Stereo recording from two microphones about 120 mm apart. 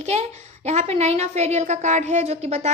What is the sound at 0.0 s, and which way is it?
A woman's voice, 65° right (ahead or behind).